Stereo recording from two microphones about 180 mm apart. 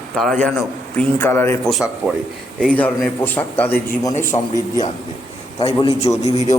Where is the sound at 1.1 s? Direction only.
15° left (ahead or behind).